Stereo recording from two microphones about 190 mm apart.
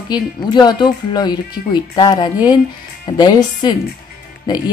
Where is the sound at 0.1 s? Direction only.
20° left (ahead or behind).